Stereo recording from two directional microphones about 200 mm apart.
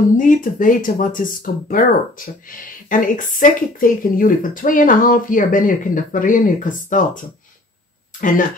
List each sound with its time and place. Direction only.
0.2 s speech: 40° left (ahead or behind)